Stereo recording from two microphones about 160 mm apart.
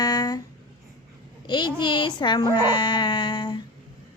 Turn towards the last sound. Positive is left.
turn(degrees=30)  # may be behind; listen again after turning